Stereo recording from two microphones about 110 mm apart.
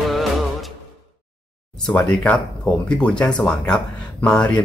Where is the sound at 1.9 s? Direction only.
10° left (ahead or behind).